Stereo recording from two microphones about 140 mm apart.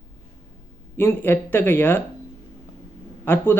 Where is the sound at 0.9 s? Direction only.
15° left (ahead or behind).